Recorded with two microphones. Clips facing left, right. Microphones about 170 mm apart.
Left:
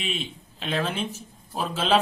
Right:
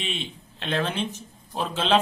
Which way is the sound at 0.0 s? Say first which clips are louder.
Left 1 dB; 5° left (ahead or behind).